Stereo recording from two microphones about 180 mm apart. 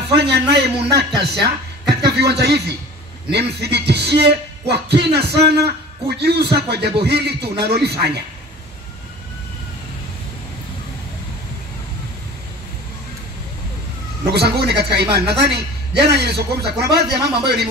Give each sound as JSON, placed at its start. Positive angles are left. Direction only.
{"t": 0.1, "sound": "a man's voice", "side_deg": -70}
{"t": 14.3, "sound": "a man's voice", "side_deg": -65}